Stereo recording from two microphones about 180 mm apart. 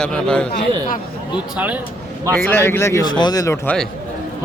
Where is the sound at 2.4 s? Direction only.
10° left (ahead or behind).